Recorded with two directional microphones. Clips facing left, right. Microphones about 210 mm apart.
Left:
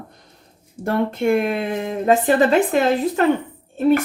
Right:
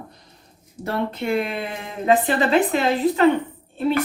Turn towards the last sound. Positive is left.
turn(degrees=45)  # may be behind; listen again after turning